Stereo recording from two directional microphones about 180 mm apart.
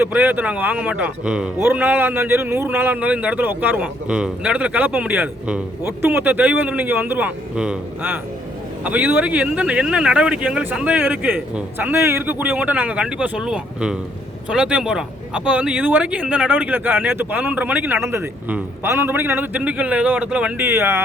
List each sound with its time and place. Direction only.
0.0 s speech: 10° right (ahead or behind)